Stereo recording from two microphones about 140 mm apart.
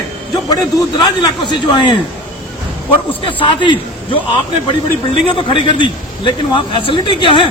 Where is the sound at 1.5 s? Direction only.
35° left (ahead or behind).